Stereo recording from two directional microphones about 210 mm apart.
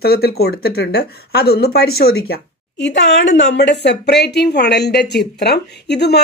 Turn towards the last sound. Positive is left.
turn(degrees=50)  # may be behind; listen again after turning